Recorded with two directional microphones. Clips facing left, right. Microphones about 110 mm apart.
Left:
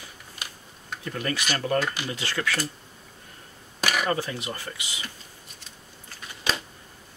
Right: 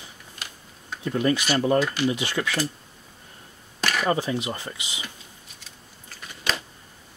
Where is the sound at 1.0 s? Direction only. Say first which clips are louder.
Right 7 dB; 20° right (ahead or behind).